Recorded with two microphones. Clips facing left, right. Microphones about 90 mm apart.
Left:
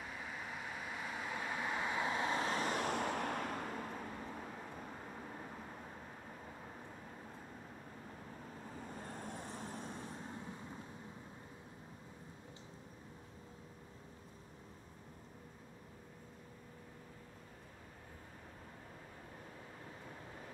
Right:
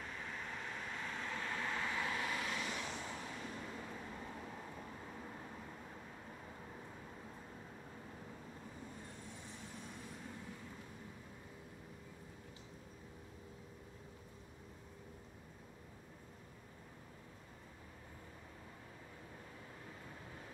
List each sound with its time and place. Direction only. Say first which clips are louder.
0.0 s train: left 1 dB; 5° left (ahead or behind); by 4.0 s 60° left (ahead or behind)
8.8 s vehicle: left 5 dB; 55° left (ahead or behind); by 10.4 s 35° left (ahead or behind)